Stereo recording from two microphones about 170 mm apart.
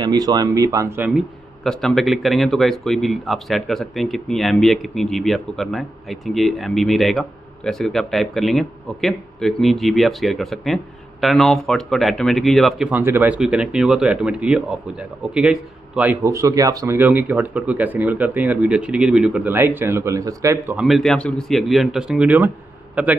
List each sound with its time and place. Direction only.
0.0 s speech: 20° right (ahead or behind)
1.6 s speech: centre (ahead or behind)
13.0 s speech: 10° right (ahead or behind)
20.7 s speech: centre (ahead or behind)